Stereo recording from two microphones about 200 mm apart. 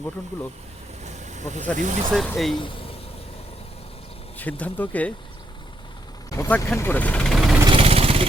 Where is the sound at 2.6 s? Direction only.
25° left (ahead or behind).